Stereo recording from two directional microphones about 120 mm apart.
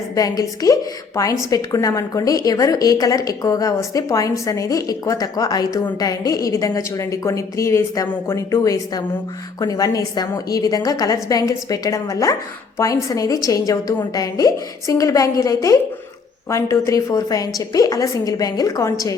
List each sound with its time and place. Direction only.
0.2 s a woman's voice: 30° left (ahead or behind)